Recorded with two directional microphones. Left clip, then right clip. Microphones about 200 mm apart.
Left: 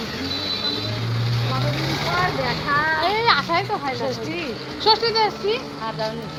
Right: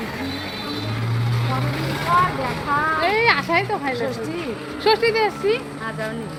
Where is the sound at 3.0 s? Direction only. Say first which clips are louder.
Right 1 dB; 55° right (ahead or behind).